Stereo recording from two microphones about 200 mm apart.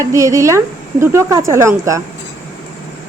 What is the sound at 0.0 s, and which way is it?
Speech, 15° right (ahead or behind).